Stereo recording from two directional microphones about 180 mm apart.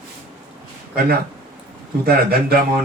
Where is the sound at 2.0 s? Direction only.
55° right (ahead or behind).